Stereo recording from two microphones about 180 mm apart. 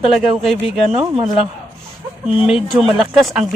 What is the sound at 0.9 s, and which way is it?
Speech, 35° right (ahead or behind).